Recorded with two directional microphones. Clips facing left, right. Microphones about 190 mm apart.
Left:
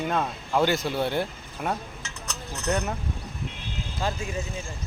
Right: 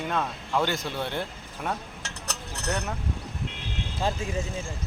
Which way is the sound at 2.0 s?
70° right (ahead or behind).